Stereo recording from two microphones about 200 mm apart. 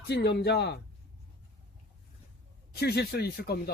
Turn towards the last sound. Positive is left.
turn(degrees=50)  # may be behind; listen again after turning